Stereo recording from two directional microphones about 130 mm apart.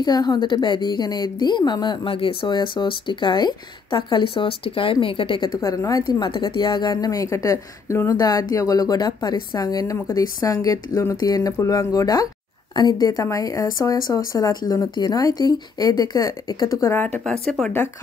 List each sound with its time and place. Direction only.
0.0 s a woman's voice: 35° left (ahead or behind)
5.6 s a woman's voice: 25° left (ahead or behind); by 17.7 s 5° left (ahead or behind)